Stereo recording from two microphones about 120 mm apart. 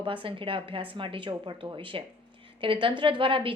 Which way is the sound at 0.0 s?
45° right (ahead or behind).